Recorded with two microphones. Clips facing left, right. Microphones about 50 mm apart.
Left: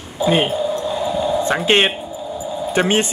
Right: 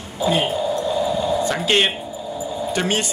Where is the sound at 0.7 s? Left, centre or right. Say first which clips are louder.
Even; centre.